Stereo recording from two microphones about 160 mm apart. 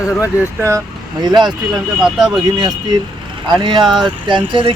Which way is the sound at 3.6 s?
30° right (ahead or behind).